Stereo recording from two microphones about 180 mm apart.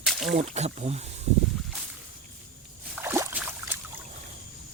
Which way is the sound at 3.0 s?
10° right (ahead or behind).